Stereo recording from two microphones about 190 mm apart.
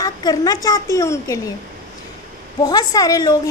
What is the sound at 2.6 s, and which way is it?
Speech, 20° left (ahead or behind).